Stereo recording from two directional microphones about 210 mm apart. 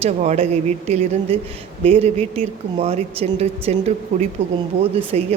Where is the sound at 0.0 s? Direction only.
30° right (ahead or behind).